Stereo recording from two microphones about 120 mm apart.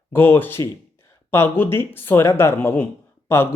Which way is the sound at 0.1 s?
15° left (ahead or behind).